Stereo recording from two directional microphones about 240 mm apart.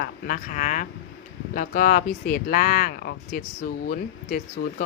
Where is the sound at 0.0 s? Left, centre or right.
Left.